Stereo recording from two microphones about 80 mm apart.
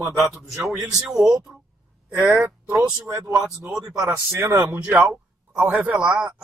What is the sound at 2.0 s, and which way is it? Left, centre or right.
Speech, centre.